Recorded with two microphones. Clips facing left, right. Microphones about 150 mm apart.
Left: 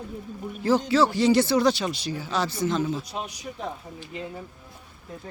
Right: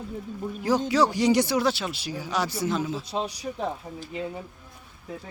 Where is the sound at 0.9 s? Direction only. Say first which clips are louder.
Even; 15° right (ahead or behind).